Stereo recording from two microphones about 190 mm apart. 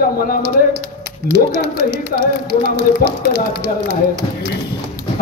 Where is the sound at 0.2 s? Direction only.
50° left (ahead or behind).